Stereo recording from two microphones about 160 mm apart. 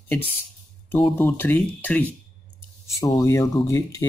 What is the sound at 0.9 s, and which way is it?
Speech, 15° left (ahead or behind).